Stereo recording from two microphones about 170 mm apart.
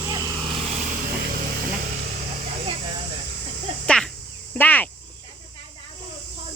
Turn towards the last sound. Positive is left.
turn(degrees=10)  # may be behind; listen again after turning